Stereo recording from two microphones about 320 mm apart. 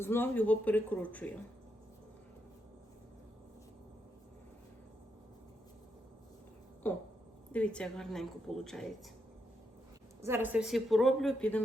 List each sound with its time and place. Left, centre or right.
0.0 s a woman's voice: centre
6.8 s a sound: centre
7.5 s a woman's voice: centre
10.2 s a woman's voice: centre